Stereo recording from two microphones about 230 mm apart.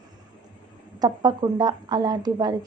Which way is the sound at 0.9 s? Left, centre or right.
Centre.